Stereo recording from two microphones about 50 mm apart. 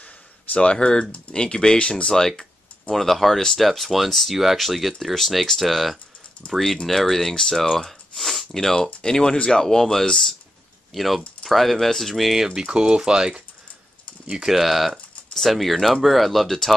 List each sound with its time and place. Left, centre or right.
0.0 s a sound: left
1.1 s speech: centre
8.2 s sniff: centre
8.5 s speech: centre
12.5 s speech: centre
14.4 s speech: centre